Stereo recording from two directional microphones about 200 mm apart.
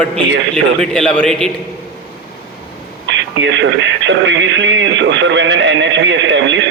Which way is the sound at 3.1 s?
65° right (ahead or behind).